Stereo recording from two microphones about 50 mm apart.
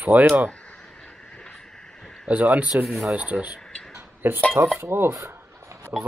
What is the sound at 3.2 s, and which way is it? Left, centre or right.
Speech, right.